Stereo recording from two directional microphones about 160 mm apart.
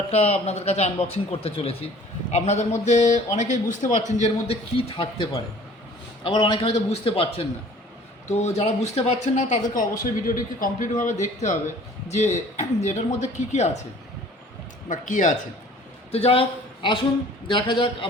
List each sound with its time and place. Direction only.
0.1 s a man's voice: 40° left (ahead or behind)
14.8 s a man's voice: 55° left (ahead or behind)
16.1 s a man's voice: 35° left (ahead or behind)